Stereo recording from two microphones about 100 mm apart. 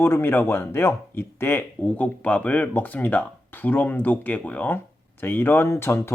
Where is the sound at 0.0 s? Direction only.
25° left (ahead or behind).